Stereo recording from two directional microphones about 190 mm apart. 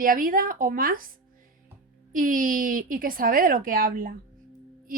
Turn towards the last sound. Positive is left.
turn(degrees=-50)  # may be behind; listen again after turning